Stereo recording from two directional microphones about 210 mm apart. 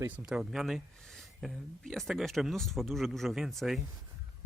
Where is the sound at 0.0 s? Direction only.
5° right (ahead or behind).